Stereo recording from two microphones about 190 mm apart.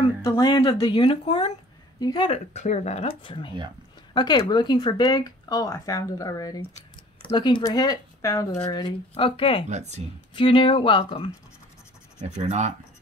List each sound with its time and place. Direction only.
0.2 s speech: 15° left (ahead or behind)
6.7 s speech: 30° left (ahead or behind)
9.1 s speech: 30° left (ahead or behind)
9.7 s speech: 35° right (ahead or behind)
10.3 s speech: 25° left (ahead or behind)
12.2 s speech: 35° right (ahead or behind)